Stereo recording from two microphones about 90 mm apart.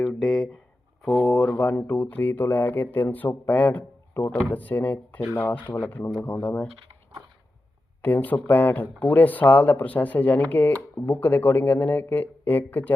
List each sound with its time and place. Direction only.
0.0 s speech: 5° left (ahead or behind)
1.0 s a sound: 5° left (ahead or behind)
1.5 s speech: 15° left (ahead or behind)
8.0 s speech: 20° left (ahead or behind)